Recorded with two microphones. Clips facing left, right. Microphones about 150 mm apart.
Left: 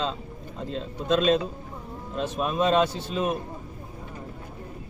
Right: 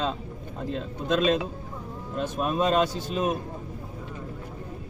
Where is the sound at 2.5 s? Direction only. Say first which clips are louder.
Left 1 dB; 40° right (ahead or behind).